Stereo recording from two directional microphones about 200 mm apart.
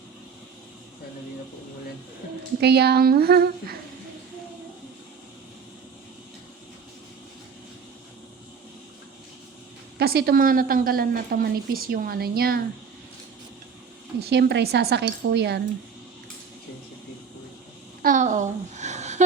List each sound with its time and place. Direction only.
2.6 s a woman's voice: 55° right (ahead or behind)
10.0 s a woman's voice: 50° right (ahead or behind)
14.2 s speech: 55° right (ahead or behind)
18.0 s a sound: 40° right (ahead or behind)